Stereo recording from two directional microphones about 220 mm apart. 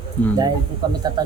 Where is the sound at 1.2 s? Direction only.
20° right (ahead or behind).